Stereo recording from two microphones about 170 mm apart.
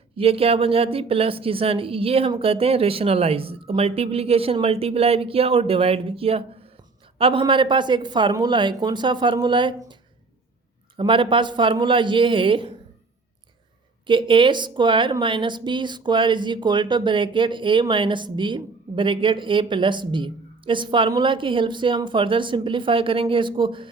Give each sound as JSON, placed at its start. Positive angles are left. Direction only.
{"t": 0.2, "sound": "a woman's voice", "side_deg": -35}
{"t": 10.9, "sound": "speech", "side_deg": -30}
{"t": 14.1, "sound": "speech", "side_deg": -30}